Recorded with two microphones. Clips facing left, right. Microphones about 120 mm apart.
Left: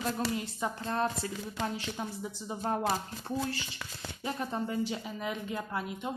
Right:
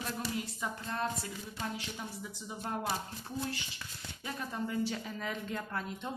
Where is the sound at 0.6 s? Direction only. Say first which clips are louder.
Left 7 dB; 30° left (ahead or behind).